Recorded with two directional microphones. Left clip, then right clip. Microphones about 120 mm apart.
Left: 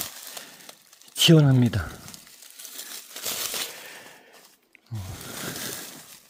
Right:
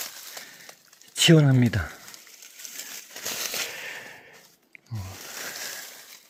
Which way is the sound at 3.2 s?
10° left (ahead or behind).